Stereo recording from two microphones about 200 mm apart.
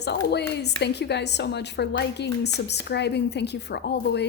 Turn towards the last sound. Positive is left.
turn(degrees=55)  # may be behind; listen again after turning